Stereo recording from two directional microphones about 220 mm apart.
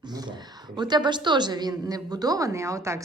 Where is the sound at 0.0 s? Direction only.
20° right (ahead or behind).